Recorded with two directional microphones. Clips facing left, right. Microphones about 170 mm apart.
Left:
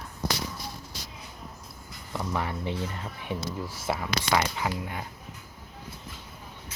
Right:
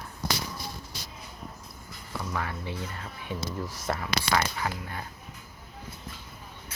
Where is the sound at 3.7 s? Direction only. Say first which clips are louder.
Left 2 dB; 5° left (ahead or behind).